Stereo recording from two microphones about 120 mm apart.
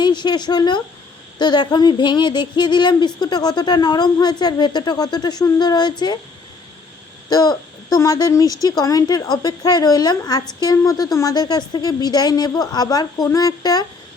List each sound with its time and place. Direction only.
0.0 s speech: 40° left (ahead or behind)
7.3 s speech: 35° left (ahead or behind)